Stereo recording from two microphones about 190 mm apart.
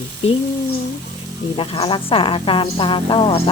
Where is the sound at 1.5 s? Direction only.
30° left (ahead or behind).